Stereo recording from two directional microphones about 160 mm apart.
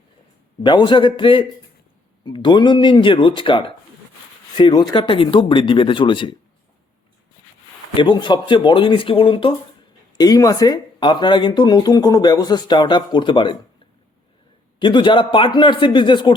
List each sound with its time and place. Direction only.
0.6 s speech: 30° left (ahead or behind)
7.9 s speech: 30° left (ahead or behind)
14.8 s speech: 30° left (ahead or behind)